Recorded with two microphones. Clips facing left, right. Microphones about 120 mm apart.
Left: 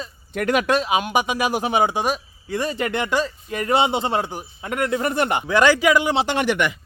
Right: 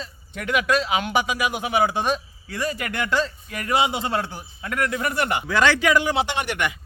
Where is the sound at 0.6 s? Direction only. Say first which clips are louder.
Left 2 dB; 20° left (ahead or behind).